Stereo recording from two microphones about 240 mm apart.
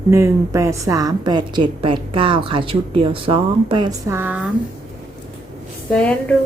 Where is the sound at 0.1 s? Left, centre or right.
Centre.